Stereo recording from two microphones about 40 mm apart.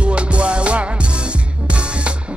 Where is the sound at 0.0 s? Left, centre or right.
Right.